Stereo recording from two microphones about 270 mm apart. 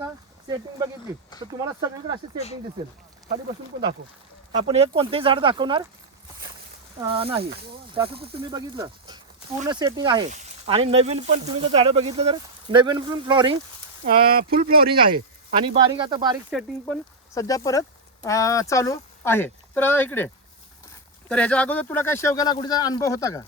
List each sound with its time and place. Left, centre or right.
0.0 s a sound: centre
1.5 s speech: centre
4.5 s speech: right
7.1 s speech: centre
14.0 s speech: right
15.5 s speech: centre
17.3 s speech: centre